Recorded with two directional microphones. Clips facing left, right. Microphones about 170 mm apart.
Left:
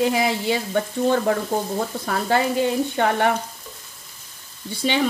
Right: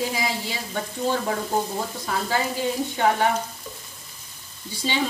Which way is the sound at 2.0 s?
65° left (ahead or behind).